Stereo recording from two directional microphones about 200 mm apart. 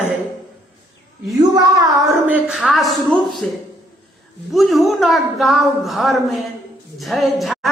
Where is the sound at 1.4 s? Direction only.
20° right (ahead or behind).